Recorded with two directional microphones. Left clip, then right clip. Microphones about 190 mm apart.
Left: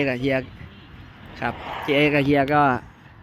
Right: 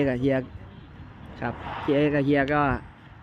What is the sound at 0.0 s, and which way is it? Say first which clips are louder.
Speech: left 2 dB; 10° right (ahead or behind).